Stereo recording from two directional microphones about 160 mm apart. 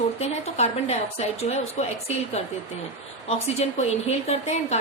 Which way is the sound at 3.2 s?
45° left (ahead or behind).